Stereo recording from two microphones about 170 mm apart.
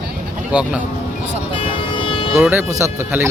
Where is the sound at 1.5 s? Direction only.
30° left (ahead or behind).